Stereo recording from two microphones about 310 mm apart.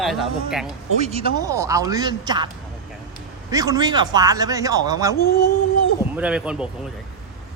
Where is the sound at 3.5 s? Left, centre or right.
Centre.